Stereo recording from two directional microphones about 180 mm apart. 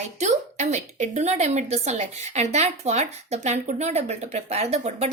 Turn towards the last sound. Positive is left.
turn(degrees=-35)  # may be behind; listen again after turning